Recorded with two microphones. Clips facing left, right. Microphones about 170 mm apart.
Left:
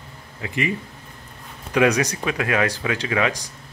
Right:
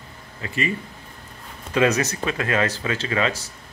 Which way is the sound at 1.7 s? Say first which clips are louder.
Left 1 dB; 15° left (ahead or behind).